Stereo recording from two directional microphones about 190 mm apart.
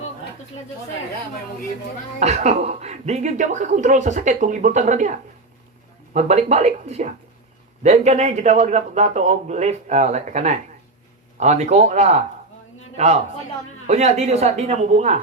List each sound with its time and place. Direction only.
2.1 s speech: 35° right (ahead or behind)
6.1 s speech: 35° right (ahead or behind)